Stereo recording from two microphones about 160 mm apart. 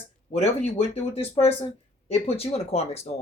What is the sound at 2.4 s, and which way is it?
Speech, 40° left (ahead or behind).